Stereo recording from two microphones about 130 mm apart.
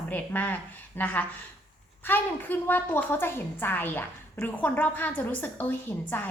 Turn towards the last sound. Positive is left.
turn(degrees=15)  # may be behind; listen again after turning